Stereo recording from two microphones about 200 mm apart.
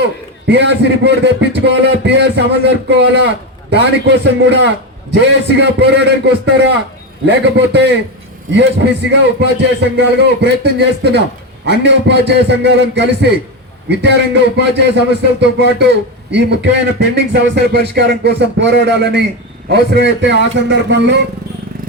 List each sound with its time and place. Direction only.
0.4 s a man's voice: 60° right (ahead or behind)
9.4 s a man's voice: 55° right (ahead or behind)